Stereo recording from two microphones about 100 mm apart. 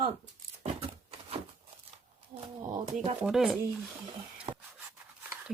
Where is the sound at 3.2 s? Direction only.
5° right (ahead or behind).